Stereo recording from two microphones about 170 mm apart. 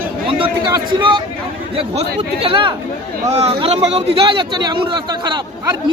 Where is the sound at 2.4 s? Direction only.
30° right (ahead or behind).